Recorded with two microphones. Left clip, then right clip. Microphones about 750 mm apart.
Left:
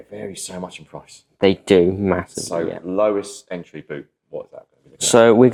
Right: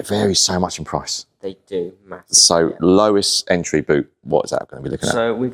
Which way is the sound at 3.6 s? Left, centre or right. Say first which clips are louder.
Right 15 dB; right.